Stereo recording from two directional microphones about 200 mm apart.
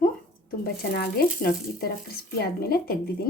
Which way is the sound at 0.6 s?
50° left (ahead or behind).